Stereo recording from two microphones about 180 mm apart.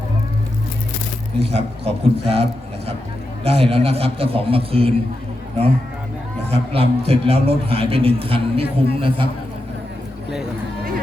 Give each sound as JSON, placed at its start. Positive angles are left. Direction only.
{"t": 1.4, "sound": "a man's voice", "side_deg": -35}
{"t": 6.5, "sound": "a man's voice", "side_deg": -35}